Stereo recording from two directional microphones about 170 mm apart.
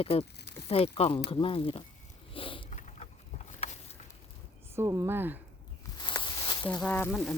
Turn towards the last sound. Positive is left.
turn(degrees=0)  # may be behind; listen again after turning